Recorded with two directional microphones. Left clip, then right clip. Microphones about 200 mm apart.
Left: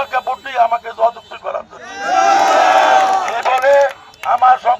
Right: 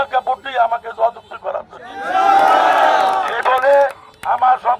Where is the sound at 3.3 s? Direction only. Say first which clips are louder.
Left 1 dB; 25° left (ahead or behind).